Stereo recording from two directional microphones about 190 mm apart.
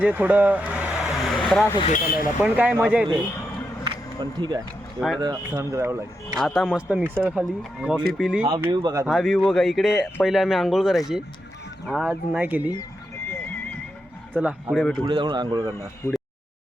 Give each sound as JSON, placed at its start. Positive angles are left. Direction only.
{"t": 0.0, "sound": "vehicle", "side_deg": -10}
{"t": 2.4, "sound": "speech", "side_deg": -10}
{"t": 3.8, "sound": "a sound", "side_deg": -25}
{"t": 4.9, "sound": "speech", "side_deg": 5}
{"t": 5.2, "sound": "speech", "side_deg": -20}
{"t": 6.4, "sound": "speech", "side_deg": 0}
{"t": 8.4, "sound": "speech", "side_deg": -20}
{"t": 9.0, "sound": "speech", "side_deg": 0}
{"t": 14.3, "sound": "speech", "side_deg": -5}
{"t": 15.0, "sound": "speech", "side_deg": -25}